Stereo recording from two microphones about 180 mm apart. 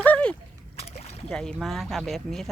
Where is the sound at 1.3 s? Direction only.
5° left (ahead or behind).